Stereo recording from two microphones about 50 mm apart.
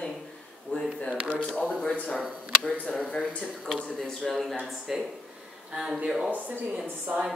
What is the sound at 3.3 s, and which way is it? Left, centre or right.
Speech, centre.